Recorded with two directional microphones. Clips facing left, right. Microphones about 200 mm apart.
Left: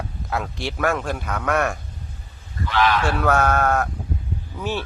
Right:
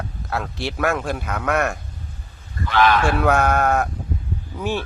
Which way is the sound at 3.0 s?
10° right (ahead or behind).